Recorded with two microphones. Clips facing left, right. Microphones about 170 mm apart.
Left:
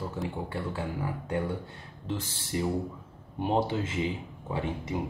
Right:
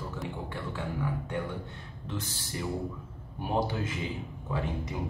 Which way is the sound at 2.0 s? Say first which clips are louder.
Left 3 dB; 30° left (ahead or behind).